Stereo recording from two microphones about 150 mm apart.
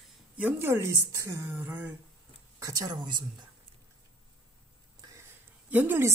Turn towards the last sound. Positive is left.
turn(degrees=-15)  # may be behind; listen again after turning